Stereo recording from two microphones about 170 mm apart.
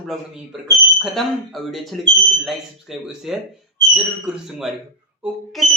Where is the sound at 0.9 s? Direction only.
Centre (ahead or behind).